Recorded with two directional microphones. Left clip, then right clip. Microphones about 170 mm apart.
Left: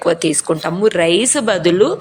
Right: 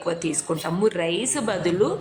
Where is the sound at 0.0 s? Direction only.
30° left (ahead or behind).